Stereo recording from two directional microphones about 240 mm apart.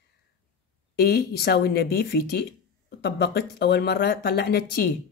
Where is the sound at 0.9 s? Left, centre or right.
Left.